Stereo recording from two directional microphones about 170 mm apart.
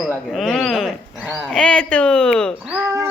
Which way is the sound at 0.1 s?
5° left (ahead or behind).